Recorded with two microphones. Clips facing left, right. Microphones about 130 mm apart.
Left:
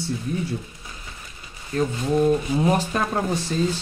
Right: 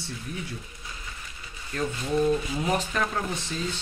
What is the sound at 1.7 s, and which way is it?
Speech, 45° left (ahead or behind).